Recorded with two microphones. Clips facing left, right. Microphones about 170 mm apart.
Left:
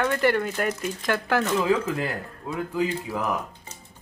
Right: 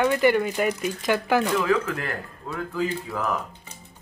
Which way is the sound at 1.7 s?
20° left (ahead or behind).